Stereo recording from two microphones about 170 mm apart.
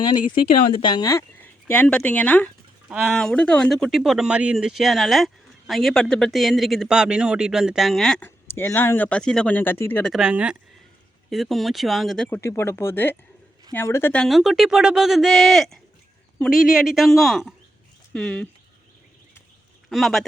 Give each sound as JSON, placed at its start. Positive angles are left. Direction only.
{"t": 0.8, "sound": "speech", "side_deg": 25}
{"t": 1.1, "sound": "speech", "side_deg": 15}
{"t": 10.0, "sound": "speech", "side_deg": 0}
{"t": 12.4, "sound": "speech", "side_deg": 15}
{"t": 19.9, "sound": "speech", "side_deg": 0}